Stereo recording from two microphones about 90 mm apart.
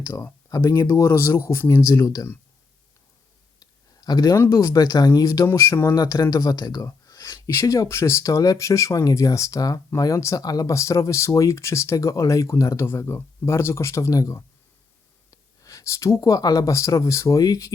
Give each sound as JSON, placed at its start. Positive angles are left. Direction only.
{"t": 0.0, "sound": "speech", "side_deg": 30}
{"t": 2.0, "sound": "speech", "side_deg": 45}
{"t": 3.6, "sound": "a sound", "side_deg": 45}
{"t": 4.5, "sound": "speech", "side_deg": 45}
{"t": 5.5, "sound": "speech", "side_deg": 30}
{"t": 5.9, "sound": "speech", "side_deg": 45}
{"t": 6.8, "sound": "a sound", "side_deg": 35}
{"t": 7.3, "sound": "a sound", "side_deg": 50}
{"t": 7.5, "sound": "speech", "side_deg": 35}
{"t": 15.6, "sound": "speech", "side_deg": 35}